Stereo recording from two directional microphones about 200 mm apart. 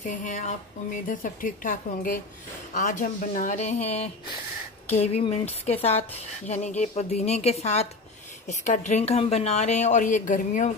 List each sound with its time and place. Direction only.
0.0 s a woman's voice: 35° left (ahead or behind)